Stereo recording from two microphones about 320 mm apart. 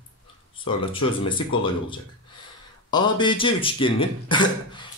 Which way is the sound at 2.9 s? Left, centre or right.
Centre.